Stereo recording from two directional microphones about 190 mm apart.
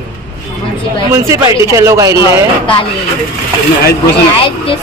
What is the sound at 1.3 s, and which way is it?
Speech, 15° right (ahead or behind).